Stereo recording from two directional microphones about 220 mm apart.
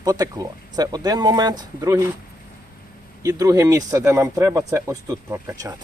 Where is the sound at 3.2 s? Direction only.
15° right (ahead or behind).